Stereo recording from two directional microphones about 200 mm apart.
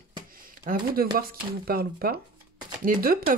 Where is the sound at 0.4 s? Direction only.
45° right (ahead or behind).